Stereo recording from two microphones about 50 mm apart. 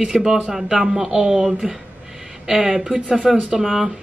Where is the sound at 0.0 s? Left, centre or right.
Centre.